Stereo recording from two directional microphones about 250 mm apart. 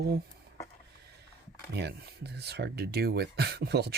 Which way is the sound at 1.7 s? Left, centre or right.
Right.